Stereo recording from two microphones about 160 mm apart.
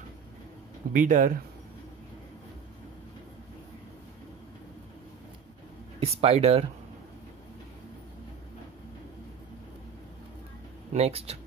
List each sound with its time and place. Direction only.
0.9 s speech: 55° right (ahead or behind)
5.9 s speech: 40° right (ahead or behind)
10.9 s speech: 40° right (ahead or behind)